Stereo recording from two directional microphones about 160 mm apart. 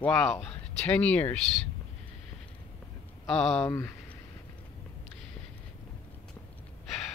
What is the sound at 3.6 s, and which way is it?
Speech, 15° left (ahead or behind).